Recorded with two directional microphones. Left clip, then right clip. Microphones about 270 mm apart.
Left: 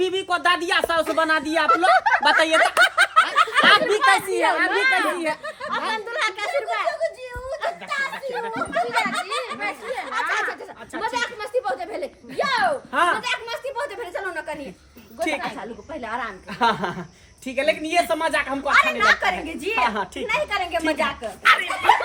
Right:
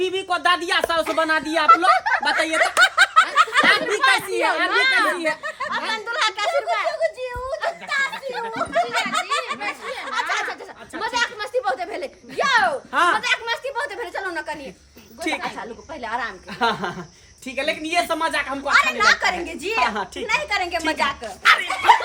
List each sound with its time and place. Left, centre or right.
0.0 s a woman's voice: centre
2.2 s speech: centre
2.8 s snicker: centre
4.0 s a woman's voice: centre
5.7 s a sound: centre
9.1 s a sound: centre
9.9 s speech: centre
11.0 s a sound: centre
12.9 s a woman's voice: centre